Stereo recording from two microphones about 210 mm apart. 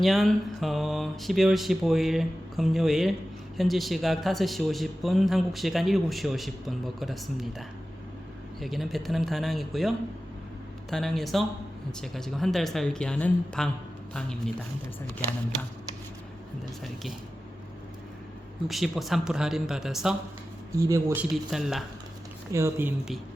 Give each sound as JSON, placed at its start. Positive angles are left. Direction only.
{"t": 0.0, "sound": "speech", "side_deg": 0}
{"t": 8.6, "sound": "speech", "side_deg": 0}
{"t": 16.8, "sound": "speech", "side_deg": 0}
{"t": 18.7, "sound": "speech", "side_deg": 0}
{"t": 20.7, "sound": "speech", "side_deg": -15}
{"t": 21.5, "sound": "speech", "side_deg": 0}
{"t": 22.5, "sound": "speech", "side_deg": -10}